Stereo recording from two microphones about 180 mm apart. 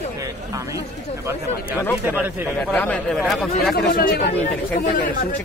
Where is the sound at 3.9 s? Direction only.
55° left (ahead or behind).